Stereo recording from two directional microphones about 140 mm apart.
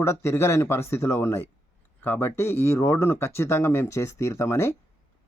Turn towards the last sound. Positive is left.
turn(degrees=20)  # may be behind; listen again after turning